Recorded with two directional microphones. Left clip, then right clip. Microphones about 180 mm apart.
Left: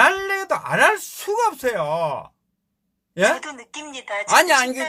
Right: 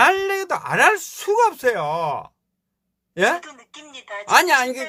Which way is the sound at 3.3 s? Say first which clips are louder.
Left 2 dB; 35° left (ahead or behind).